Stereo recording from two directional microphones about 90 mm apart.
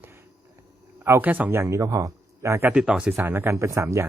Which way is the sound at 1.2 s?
15° right (ahead or behind).